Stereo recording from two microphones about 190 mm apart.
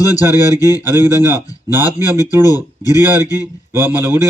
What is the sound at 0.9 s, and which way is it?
Speech, 10° right (ahead or behind).